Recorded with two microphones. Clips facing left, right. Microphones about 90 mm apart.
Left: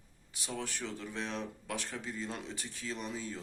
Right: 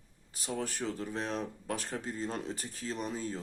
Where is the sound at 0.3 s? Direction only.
40° right (ahead or behind).